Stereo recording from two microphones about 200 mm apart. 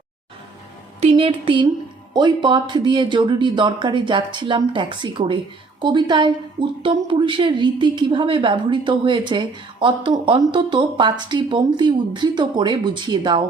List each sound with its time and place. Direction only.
1.0 s a woman's voice: 25° right (ahead or behind)